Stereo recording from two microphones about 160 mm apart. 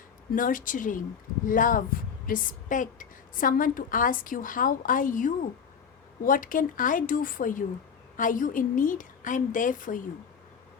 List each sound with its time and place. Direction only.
0.3 s a woman's voice: 55° left (ahead or behind)